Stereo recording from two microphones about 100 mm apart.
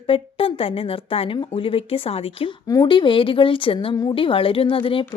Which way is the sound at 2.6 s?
35° left (ahead or behind).